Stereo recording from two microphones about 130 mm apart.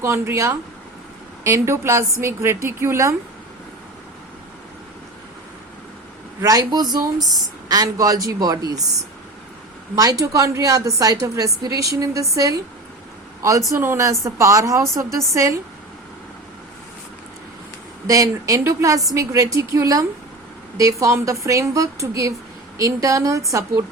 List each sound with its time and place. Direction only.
0.0 s a woman's voice: 20° right (ahead or behind)
6.4 s a woman's voice: 30° right (ahead or behind)
18.0 s a woman's voice: 25° right (ahead or behind)